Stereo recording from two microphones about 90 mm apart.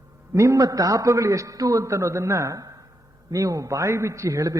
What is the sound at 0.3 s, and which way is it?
A man's voice, 35° right (ahead or behind).